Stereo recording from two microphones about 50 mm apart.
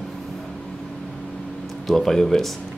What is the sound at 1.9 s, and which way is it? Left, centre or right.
Speech, centre.